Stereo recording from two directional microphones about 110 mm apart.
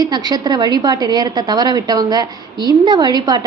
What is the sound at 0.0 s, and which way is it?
A woman's voice, 40° right (ahead or behind).